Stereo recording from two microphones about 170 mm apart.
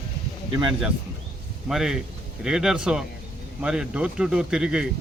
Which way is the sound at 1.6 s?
Centre (ahead or behind).